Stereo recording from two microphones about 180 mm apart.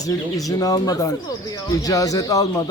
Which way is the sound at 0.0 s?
20° left (ahead or behind).